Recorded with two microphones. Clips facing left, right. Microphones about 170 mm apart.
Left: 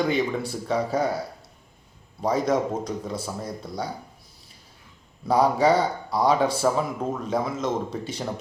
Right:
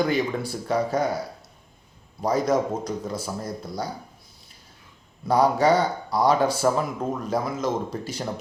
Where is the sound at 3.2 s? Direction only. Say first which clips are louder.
Right 1 dB; centre (ahead or behind).